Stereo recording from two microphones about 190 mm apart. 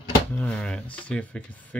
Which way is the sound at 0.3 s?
5° left (ahead or behind).